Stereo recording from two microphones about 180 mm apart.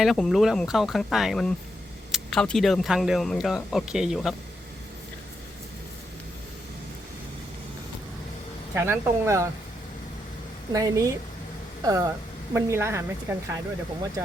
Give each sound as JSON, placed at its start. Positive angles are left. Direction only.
{"t": 0.0, "sound": "speech", "side_deg": 0}
{"t": 8.7, "sound": "speech", "side_deg": -15}
{"t": 10.7, "sound": "speech", "side_deg": -20}